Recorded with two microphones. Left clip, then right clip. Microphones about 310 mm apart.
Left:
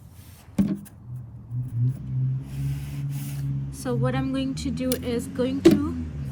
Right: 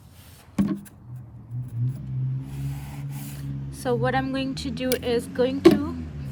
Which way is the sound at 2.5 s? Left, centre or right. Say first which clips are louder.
Left 1 dB; centre.